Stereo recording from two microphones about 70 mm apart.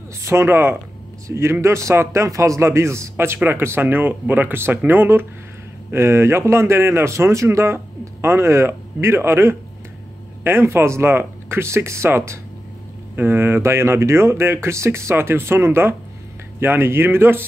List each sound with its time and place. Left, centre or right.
0.2 s speech: right